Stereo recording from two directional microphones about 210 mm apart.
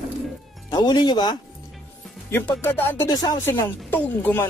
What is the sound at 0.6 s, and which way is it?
Speech, 20° left (ahead or behind).